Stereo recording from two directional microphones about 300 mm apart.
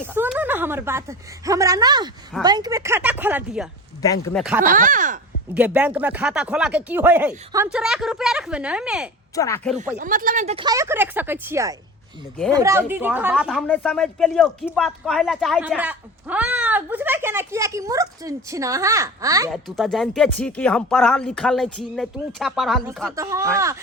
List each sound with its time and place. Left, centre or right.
0.0 s a woman's voice: centre
4.0 s speech: centre
4.6 s speech: right
5.5 s speech: centre
9.3 s speech: centre
10.0 s a woman's voice: right; by 19.5 s centre
19.5 s speech: centre
23.1 s a woman's voice: centre